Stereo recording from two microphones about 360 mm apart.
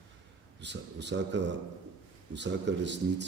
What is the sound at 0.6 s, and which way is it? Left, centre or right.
Speech, right.